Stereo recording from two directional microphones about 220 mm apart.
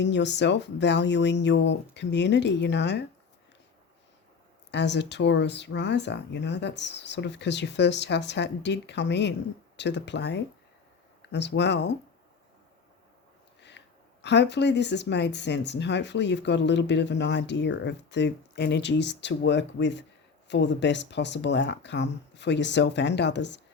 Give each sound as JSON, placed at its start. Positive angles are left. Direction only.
{"t": 0.0, "sound": "speech", "side_deg": 55}
{"t": 4.7, "sound": "speech", "side_deg": 50}
{"t": 13.6, "sound": "speech", "side_deg": 50}